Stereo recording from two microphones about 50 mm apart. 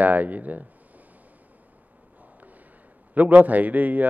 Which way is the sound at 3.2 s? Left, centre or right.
Right.